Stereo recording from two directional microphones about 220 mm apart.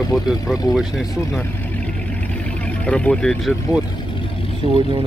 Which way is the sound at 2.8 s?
5° left (ahead or behind).